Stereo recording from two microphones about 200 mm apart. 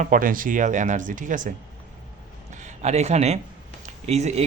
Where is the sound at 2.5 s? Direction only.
35° right (ahead or behind).